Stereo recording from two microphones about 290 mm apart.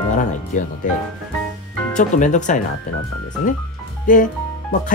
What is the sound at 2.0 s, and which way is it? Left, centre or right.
Speech, left.